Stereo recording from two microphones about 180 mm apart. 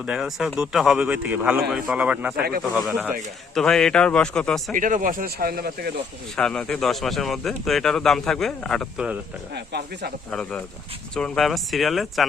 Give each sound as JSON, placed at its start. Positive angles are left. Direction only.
{"t": 0.0, "sound": "speech", "side_deg": -5}
{"t": 4.7, "sound": "speech", "side_deg": -45}
{"t": 6.3, "sound": "speech", "side_deg": 5}
{"t": 9.6, "sound": "speech", "side_deg": -65}
{"t": 11.1, "sound": "speech", "side_deg": 5}